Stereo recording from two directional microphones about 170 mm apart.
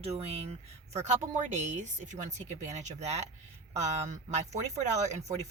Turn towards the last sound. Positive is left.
turn(degrees=-40)  # may be behind; listen again after turning